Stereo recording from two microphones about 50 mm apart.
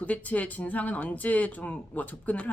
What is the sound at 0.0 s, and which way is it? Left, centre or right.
Speech, left.